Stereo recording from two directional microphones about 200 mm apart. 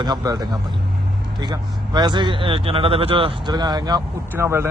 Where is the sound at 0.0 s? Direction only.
20° right (ahead or behind).